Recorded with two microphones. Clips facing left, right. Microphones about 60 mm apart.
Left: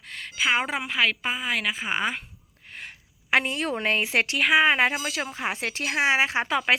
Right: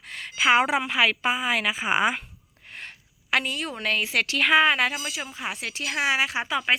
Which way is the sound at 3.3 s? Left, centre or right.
Left.